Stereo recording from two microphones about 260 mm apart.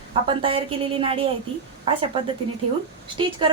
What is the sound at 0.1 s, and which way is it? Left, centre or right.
A woman's voice, right.